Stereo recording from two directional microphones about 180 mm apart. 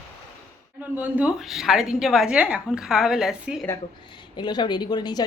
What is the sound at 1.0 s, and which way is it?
A woman's voice, 5° right (ahead or behind).